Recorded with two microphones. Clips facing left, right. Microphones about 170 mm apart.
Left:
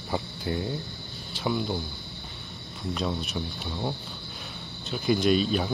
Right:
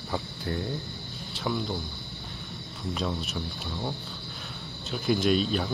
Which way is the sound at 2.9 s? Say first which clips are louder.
Left 2 dB; centre (ahead or behind).